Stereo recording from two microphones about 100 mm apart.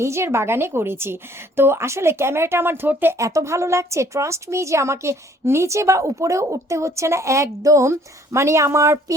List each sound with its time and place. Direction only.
0.0 s speech: 30° right (ahead or behind)
3.2 s speech: 30° right (ahead or behind)